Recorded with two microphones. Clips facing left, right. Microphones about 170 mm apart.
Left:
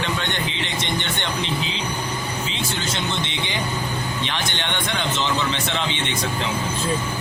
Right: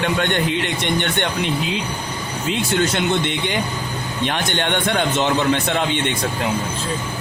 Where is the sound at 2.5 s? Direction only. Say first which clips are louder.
Right 8 dB; 55° right (ahead or behind).